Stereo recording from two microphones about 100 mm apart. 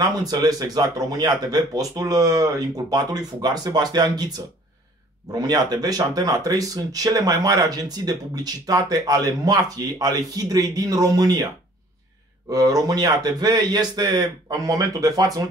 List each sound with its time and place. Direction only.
0.0 s speech: 40° right (ahead or behind)
12.4 s speech: 40° right (ahead or behind)